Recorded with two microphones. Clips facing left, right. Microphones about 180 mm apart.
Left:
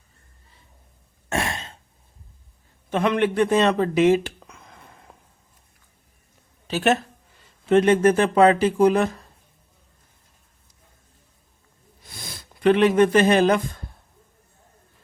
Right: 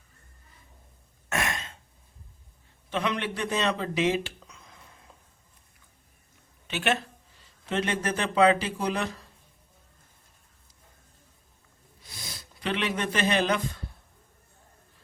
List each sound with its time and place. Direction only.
1.3 s throat clearing: 30° left (ahead or behind)
2.9 s speech: 50° left (ahead or behind)
6.7 s speech: 40° left (ahead or behind)
12.0 s speech: 55° left (ahead or behind)